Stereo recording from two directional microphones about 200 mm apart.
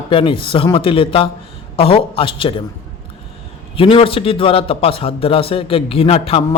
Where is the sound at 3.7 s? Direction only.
25° left (ahead or behind).